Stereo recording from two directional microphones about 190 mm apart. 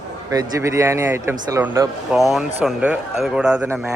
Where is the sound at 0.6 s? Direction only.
15° right (ahead or behind).